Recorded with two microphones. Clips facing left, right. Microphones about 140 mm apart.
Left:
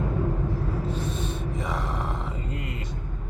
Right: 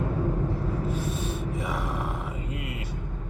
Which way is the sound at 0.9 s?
10° right (ahead or behind).